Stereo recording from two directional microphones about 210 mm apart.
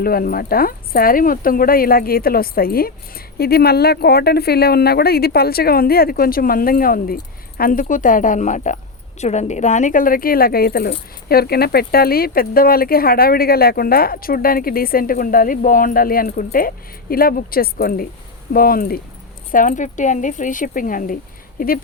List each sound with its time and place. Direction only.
0.0 s a woman's voice: 45° left (ahead or behind)